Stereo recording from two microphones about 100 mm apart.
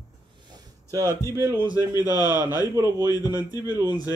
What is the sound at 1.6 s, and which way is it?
Speech, 40° left (ahead or behind).